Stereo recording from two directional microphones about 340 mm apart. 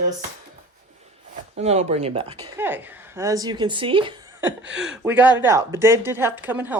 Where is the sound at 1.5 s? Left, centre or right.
Centre.